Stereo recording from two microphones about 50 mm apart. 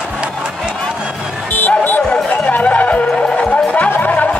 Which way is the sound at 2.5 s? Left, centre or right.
Left.